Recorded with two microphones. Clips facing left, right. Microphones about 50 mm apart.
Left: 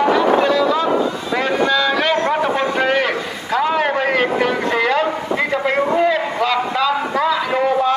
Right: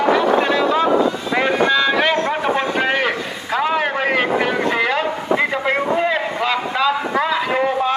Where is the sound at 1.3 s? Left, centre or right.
Right.